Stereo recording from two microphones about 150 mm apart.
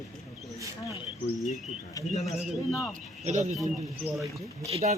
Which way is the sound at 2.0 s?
25° left (ahead or behind).